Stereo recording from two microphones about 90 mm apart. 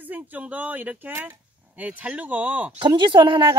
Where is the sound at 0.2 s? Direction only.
15° right (ahead or behind).